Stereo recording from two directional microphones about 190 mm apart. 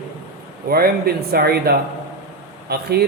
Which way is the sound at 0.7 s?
55° right (ahead or behind).